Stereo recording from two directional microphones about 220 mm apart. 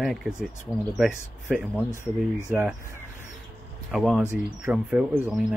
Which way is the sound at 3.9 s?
Centre (ahead or behind).